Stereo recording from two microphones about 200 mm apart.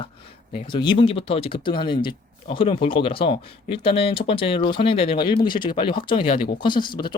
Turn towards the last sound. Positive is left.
turn(degrees=25)  # may be behind; listen again after turning